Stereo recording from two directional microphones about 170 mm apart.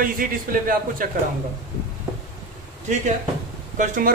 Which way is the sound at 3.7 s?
50° right (ahead or behind).